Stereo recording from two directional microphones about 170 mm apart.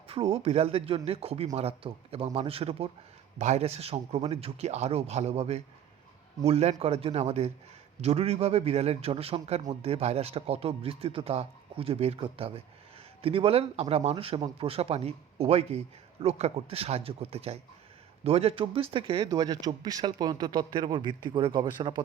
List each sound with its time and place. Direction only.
0.1 s a man's voice: 35° right (ahead or behind)
19.2 s speech: 20° right (ahead or behind)